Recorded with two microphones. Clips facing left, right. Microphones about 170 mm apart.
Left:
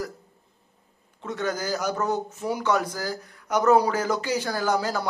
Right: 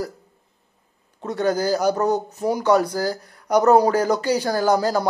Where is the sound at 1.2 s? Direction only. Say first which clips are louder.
Right 7 dB; 35° right (ahead or behind).